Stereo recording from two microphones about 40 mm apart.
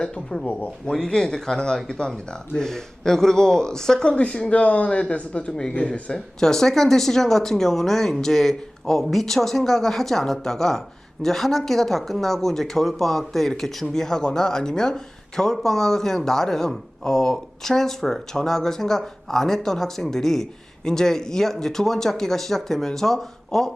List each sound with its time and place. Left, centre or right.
0.0 s speech: centre
5.5 s speech: centre